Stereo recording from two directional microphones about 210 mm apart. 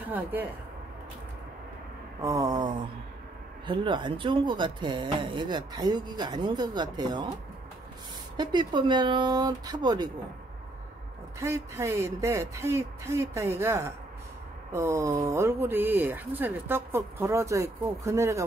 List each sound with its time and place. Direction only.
0.0 s speech: 10° right (ahead or behind)
2.2 s speech: 15° right (ahead or behind)
8.4 s speech: 20° right (ahead or behind)
11.3 s speech: 15° right (ahead or behind)